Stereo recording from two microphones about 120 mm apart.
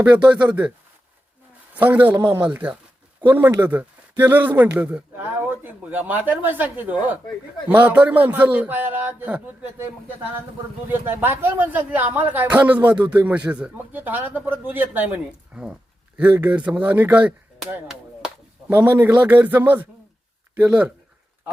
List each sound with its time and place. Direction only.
0.0 s speech: 10° right (ahead or behind)
1.7 s speech: 15° right (ahead or behind)
11.0 s speech: 15° right (ahead or behind)
18.7 s speech: 15° right (ahead or behind)